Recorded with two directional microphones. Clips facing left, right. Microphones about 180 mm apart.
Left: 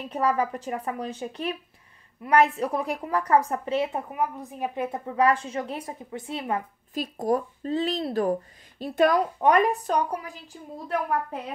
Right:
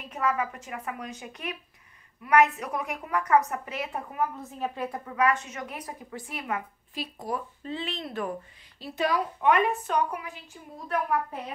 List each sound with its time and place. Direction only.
0.1 s a woman's voice: 35° left (ahead or behind)
4.1 s a woman's voice: 15° left (ahead or behind)
6.9 s a woman's voice: 45° left (ahead or behind)
8.7 s a woman's voice: 50° left (ahead or behind); by 11.0 s 35° left (ahead or behind)